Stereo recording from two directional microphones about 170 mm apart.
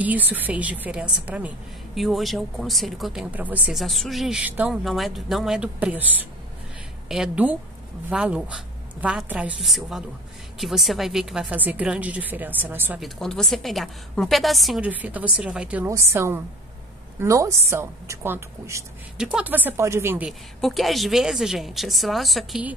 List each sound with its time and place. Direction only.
0.0 s a woman's voice: 10° right (ahead or behind)
13.0 s a woman's voice: 5° left (ahead or behind)